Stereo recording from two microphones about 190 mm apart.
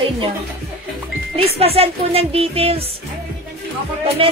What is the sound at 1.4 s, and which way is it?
Speech, 30° right (ahead or behind).